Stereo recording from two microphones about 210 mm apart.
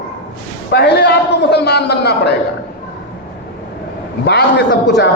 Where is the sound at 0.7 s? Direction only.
50° left (ahead or behind).